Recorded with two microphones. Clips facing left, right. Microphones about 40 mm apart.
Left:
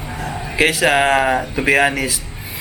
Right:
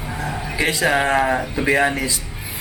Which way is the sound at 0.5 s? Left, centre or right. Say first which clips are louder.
Left 4 dB; left.